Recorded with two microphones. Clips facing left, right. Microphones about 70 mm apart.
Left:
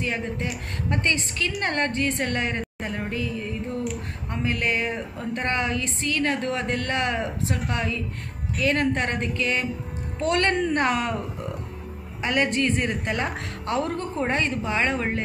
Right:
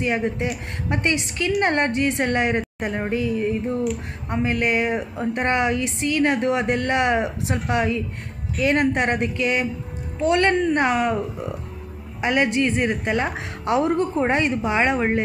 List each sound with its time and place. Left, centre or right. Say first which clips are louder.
0.0 s a woman's voice: right 5 dB; right
3.6 s a woman's voice: right 5 dB; centre
4.3 s a woman's voice: right 4 dB; right
7.5 s a woman's voice: right 9 dB; centre
8.6 s speech: right 4 dB; centre
12.2 s a woman's voice: right 3 dB; centre
13.7 s a woman's voice: right 7 dB; centre